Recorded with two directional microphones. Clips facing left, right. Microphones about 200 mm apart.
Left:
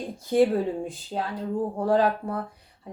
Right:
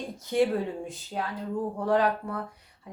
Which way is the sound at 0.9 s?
30° left (ahead or behind).